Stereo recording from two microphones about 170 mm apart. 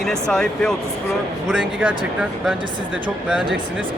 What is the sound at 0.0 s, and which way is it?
Speech, 5° left (ahead or behind).